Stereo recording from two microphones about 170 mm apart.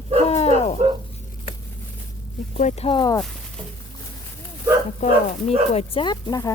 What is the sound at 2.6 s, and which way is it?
Speech, 40° left (ahead or behind).